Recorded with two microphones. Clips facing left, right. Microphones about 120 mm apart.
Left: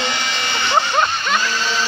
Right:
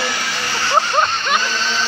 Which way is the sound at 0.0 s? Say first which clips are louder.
Even; 20° left (ahead or behind).